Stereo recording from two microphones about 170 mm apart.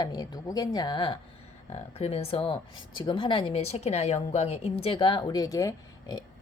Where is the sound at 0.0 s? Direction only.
20° left (ahead or behind).